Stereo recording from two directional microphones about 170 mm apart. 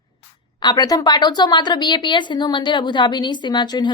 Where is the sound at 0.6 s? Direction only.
25° left (ahead or behind).